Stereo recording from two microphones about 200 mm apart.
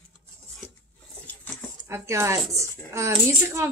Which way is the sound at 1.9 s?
15° right (ahead or behind).